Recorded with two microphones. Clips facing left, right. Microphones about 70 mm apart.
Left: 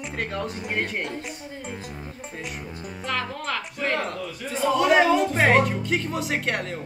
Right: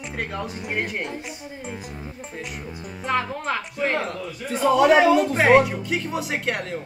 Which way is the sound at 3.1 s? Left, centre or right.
Centre.